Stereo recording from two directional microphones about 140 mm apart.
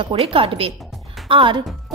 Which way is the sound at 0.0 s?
40° right (ahead or behind).